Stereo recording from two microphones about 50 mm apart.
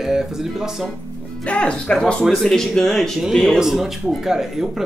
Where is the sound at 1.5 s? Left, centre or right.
Left.